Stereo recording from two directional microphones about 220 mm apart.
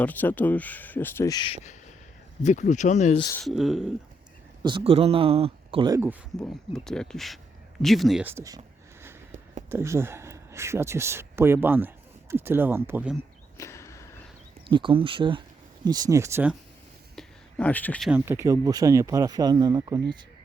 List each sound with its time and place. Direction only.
0.0 s speech: 10° left (ahead or behind)
2.4 s speech: 35° left (ahead or behind)
3.4 s speech: centre (ahead or behind)
4.6 s speech: 25° right (ahead or behind)
6.4 s speech: centre (ahead or behind)
13.6 s a sound: 15° left (ahead or behind)
14.6 s speech: 20° right (ahead or behind)
17.2 s a sound: 5° left (ahead or behind)
18.1 s speech: 10° right (ahead or behind)